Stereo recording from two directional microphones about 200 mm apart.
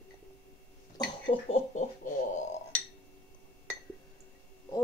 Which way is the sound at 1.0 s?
30° left (ahead or behind).